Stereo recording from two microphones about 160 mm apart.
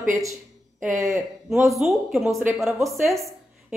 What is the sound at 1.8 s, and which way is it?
A woman's voice, centre (ahead or behind).